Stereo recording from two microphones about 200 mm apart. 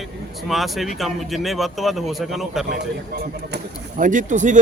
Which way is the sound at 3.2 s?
45° right (ahead or behind).